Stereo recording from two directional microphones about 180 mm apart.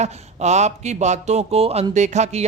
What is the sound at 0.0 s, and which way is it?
Speech, 40° right (ahead or behind).